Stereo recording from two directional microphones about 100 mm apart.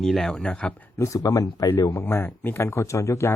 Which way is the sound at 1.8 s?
25° left (ahead or behind).